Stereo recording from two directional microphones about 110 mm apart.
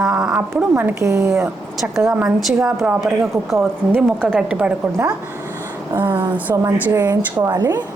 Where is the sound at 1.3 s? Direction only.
5° right (ahead or behind).